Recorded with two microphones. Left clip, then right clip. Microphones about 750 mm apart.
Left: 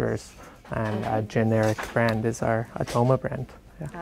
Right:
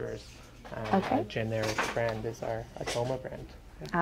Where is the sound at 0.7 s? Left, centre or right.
Left.